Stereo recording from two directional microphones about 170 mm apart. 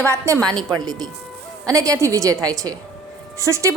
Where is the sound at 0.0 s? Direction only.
15° right (ahead or behind).